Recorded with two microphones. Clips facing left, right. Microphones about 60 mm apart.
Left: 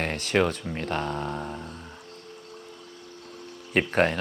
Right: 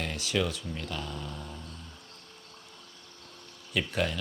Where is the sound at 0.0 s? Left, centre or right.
Left.